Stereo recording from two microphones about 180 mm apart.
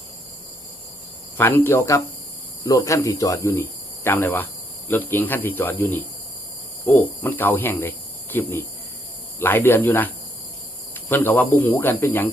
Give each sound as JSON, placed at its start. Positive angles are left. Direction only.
{"t": 1.4, "sound": "speech", "side_deg": 15}
{"t": 6.8, "sound": "cricket", "side_deg": 10}
{"t": 9.4, "sound": "speech", "side_deg": 10}